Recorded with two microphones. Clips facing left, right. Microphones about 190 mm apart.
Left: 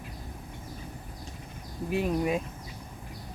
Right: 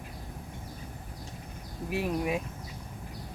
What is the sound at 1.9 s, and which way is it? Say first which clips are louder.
Speech: left 3 dB; centre (ahead or behind).